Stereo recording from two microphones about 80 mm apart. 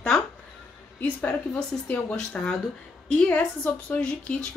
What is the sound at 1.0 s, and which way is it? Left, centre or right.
A woman's voice, centre.